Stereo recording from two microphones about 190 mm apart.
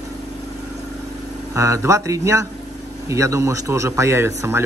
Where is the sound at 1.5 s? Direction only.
15° right (ahead or behind).